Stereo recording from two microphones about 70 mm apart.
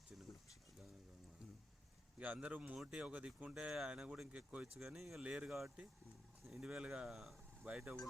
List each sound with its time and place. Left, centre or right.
2.1 s speech: right
2.7 s speech: centre
3.1 s speech: centre
3.6 s speech: centre
4.8 s speech: centre
5.5 s speech: centre